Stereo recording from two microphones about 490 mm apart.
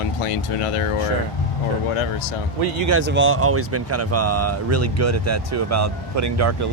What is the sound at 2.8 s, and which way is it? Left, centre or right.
Speech, right.